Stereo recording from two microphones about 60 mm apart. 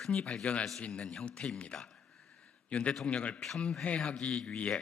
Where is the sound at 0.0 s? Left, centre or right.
Centre.